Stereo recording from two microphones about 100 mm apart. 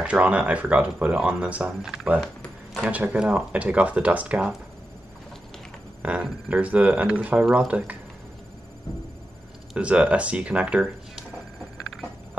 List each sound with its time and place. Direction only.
0.0 s speech: 10° right (ahead or behind)
6.0 s speech: 15° right (ahead or behind)
9.8 s speech: 10° right (ahead or behind)